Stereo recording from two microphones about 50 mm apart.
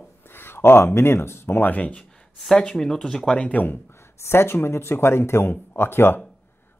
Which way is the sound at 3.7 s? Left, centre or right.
Left.